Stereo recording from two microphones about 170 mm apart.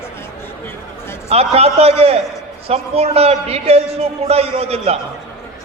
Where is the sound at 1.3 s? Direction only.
35° right (ahead or behind).